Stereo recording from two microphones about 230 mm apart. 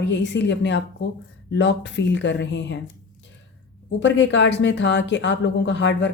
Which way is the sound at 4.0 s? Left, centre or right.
Left.